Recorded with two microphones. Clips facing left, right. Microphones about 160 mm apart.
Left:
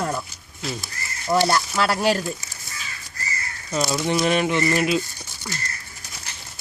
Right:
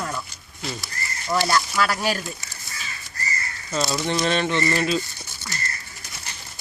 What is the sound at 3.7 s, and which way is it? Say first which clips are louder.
Speech: left 2 dB; 10° left (ahead or behind).